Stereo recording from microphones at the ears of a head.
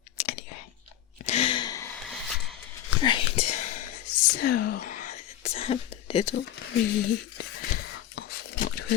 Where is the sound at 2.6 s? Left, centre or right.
Left.